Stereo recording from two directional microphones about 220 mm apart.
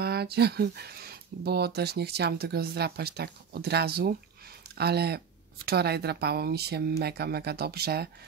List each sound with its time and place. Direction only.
0.0 s speech: 45° right (ahead or behind)